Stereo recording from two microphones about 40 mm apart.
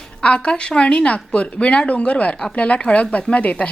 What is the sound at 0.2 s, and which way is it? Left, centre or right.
Speech, left.